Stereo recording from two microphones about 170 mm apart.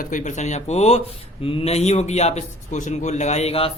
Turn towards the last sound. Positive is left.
turn(degrees=35)  # may be behind; listen again after turning